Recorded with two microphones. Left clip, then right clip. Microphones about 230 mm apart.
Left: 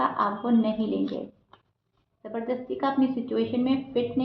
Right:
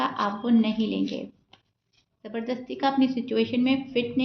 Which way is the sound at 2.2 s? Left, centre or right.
Right.